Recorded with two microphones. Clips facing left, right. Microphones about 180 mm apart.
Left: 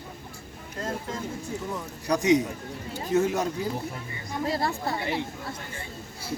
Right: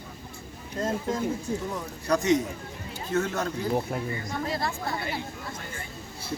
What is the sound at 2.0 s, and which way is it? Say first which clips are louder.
A man's voice: left 1 dB; 15° left (ahead or behind).